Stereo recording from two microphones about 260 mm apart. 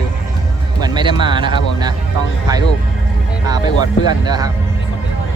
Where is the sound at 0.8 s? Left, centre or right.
Centre.